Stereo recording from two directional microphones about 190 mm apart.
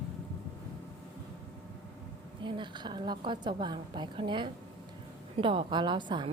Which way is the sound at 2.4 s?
25° right (ahead or behind).